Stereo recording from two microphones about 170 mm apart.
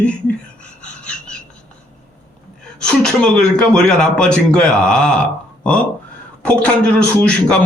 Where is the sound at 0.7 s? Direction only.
5° left (ahead or behind).